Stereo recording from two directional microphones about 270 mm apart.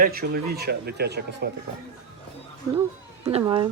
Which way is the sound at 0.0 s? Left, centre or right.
Right.